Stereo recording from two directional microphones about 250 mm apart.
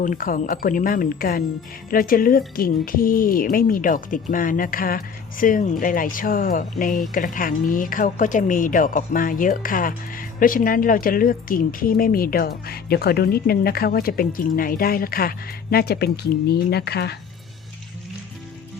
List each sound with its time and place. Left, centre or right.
0.0 s speech: left